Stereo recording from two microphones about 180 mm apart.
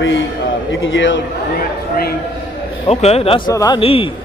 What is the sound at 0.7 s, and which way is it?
Speech, 90° left.